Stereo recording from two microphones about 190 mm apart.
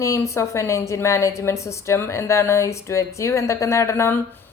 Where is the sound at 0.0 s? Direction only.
15° left (ahead or behind).